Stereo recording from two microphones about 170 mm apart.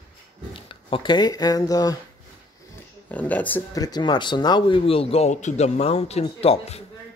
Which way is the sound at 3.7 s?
20° left (ahead or behind).